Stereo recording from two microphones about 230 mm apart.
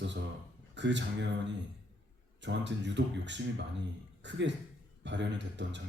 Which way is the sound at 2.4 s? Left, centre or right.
Right.